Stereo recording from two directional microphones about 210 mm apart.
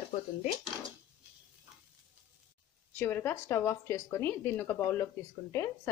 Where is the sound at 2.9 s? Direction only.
10° left (ahead or behind).